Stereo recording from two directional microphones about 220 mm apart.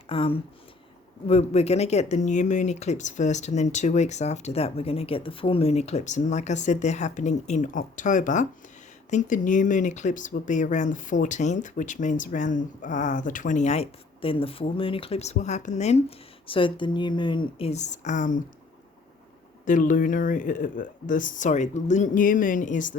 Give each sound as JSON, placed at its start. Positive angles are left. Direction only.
{"t": 0.1, "sound": "speech", "side_deg": 25}
{"t": 19.6, "sound": "speech", "side_deg": 35}